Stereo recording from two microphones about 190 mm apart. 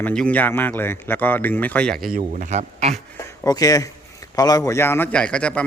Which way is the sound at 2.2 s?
40° right (ahead or behind).